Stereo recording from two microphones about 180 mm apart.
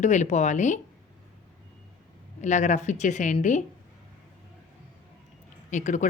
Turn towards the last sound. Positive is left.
turn(degrees=40)  # may be behind; listen again after turning